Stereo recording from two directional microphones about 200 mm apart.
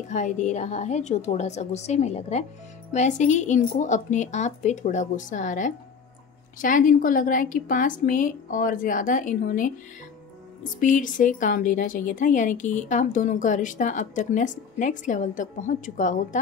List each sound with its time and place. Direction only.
0.1 s a woman's voice: 35° left (ahead or behind)